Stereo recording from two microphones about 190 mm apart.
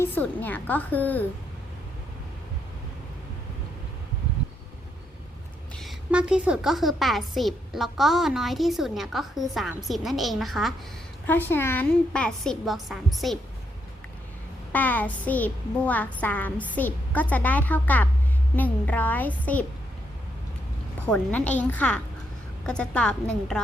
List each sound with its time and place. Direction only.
0.0 s a woman's voice: 10° left (ahead or behind)
5.8 s a woman's voice: 5° right (ahead or behind)
11.3 s a woman's voice: 10° left (ahead or behind)
14.7 s a woman's voice: 10° left (ahead or behind)
21.1 s a woman's voice: 10° left (ahead or behind)